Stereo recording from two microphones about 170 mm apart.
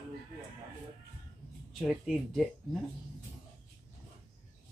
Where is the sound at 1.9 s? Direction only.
Centre (ahead or behind).